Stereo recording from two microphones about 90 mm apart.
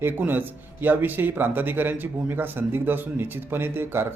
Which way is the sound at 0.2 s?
20° right (ahead or behind).